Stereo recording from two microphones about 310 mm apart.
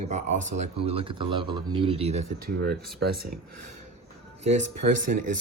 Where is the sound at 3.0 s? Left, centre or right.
Right.